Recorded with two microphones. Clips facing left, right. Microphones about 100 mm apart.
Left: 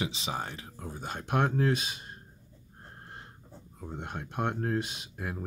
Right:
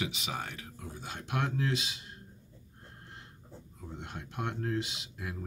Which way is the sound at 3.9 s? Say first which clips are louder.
Left 5 dB; 50° left (ahead or behind).